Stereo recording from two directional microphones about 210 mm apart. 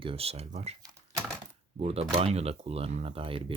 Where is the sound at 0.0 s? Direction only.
25° right (ahead or behind).